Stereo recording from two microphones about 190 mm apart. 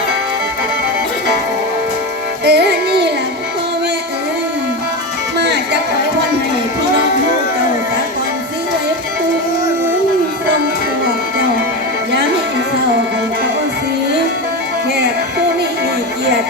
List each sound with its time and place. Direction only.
2.4 s music: 60° right (ahead or behind)
5.4 s music: 60° right (ahead or behind)